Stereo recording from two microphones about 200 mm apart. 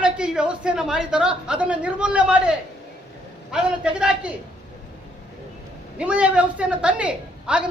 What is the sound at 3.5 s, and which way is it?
Speech, 5° right (ahead or behind).